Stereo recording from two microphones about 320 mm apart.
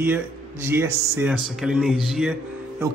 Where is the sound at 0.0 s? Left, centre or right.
Centre.